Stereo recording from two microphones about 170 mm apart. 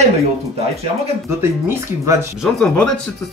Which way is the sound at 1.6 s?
15° right (ahead or behind).